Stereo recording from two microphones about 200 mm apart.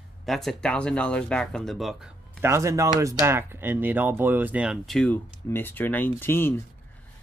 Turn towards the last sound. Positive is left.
turn(degrees=10)  # may be behind; listen again after turning